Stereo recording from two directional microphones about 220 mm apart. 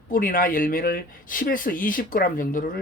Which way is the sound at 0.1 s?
40° left (ahead or behind).